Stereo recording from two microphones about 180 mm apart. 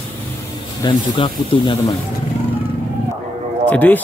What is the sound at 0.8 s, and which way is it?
Speech, 25° left (ahead or behind).